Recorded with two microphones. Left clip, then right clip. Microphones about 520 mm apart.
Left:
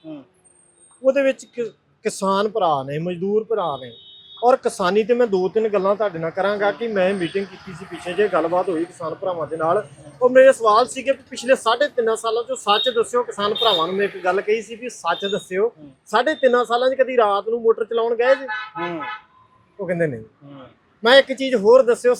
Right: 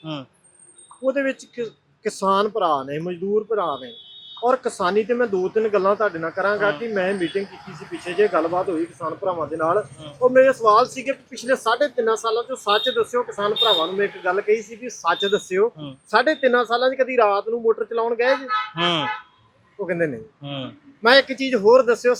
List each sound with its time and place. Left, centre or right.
1.0 s speech: left
19.8 s speech: centre